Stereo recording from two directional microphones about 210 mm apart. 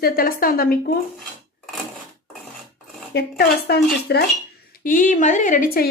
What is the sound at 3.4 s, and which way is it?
Speech, 50° left (ahead or behind).